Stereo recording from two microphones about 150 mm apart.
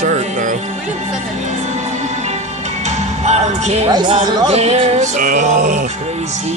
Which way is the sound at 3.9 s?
30° right (ahead or behind).